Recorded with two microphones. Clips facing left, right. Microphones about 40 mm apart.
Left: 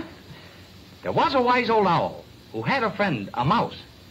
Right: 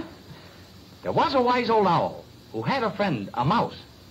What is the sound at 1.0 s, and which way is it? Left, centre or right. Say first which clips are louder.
A man's voice: left 1 dB; left.